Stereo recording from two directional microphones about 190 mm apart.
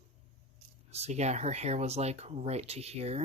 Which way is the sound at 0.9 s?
35° right (ahead or behind).